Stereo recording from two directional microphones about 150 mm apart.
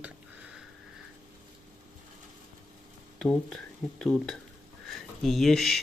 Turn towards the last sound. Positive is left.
turn(degrees=0)  # may be behind; listen again after turning